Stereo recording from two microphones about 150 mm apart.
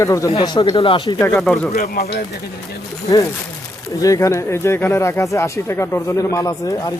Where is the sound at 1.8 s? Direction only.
50° left (ahead or behind).